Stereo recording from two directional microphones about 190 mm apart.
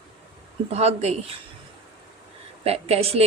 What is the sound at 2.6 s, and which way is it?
Speech, 30° right (ahead or behind).